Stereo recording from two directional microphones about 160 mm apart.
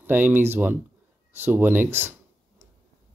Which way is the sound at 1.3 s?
15° right (ahead or behind).